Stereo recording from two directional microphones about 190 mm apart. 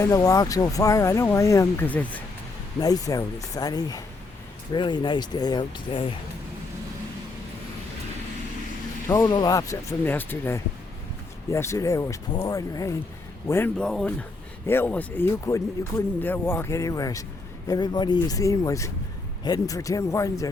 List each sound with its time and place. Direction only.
0.0 s speech: 20° left (ahead or behind)
2.8 s speech: 20° left (ahead or behind)
9.0 s speech: 10° left (ahead or behind)